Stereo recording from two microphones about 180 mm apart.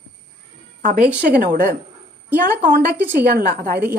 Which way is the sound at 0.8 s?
50° right (ahead or behind).